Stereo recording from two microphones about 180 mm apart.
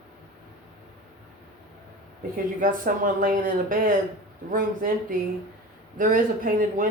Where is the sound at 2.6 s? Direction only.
50° right (ahead or behind).